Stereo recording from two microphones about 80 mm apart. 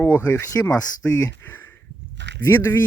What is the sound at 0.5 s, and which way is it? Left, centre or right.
Speech, centre.